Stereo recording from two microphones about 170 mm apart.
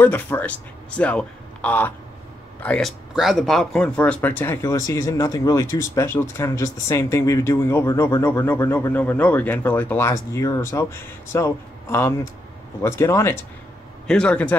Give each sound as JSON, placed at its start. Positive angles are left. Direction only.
{"t": 0.0, "sound": "a man's voice", "side_deg": 10}
{"t": 14.0, "sound": "a man's voice", "side_deg": 5}